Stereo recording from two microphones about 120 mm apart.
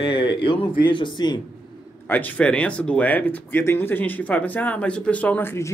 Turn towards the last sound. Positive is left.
turn(degrees=20)  # may be behind; listen again after turning